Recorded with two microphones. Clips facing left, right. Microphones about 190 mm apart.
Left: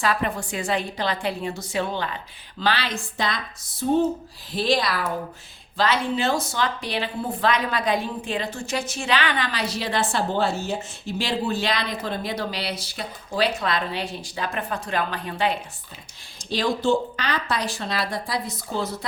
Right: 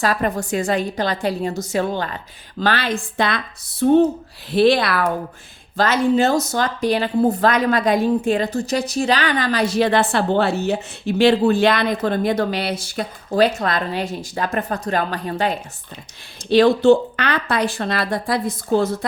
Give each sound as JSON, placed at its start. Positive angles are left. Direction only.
{"t": 0.0, "sound": "a woman's voice", "side_deg": -40}
{"t": 5.7, "sound": "a woman's voice", "side_deg": -45}
{"t": 16.5, "sound": "speech", "side_deg": -65}